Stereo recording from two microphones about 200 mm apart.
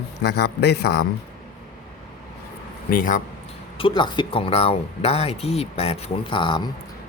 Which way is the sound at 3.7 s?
25° left (ahead or behind).